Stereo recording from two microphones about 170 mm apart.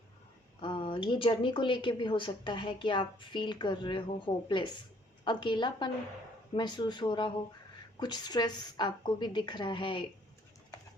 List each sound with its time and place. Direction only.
0.6 s speech: 30° left (ahead or behind)